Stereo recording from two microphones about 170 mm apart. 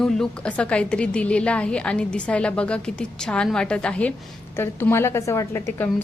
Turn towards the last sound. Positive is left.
turn(degrees=15)  # may be behind; listen again after turning